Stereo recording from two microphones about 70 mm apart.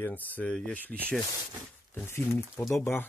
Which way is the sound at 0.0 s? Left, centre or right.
Left.